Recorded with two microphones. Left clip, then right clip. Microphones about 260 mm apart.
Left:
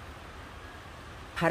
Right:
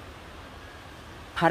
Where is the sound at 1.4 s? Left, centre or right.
Centre.